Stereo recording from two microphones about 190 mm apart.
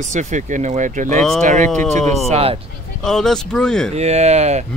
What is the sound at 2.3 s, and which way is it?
Speech, 30° right (ahead or behind).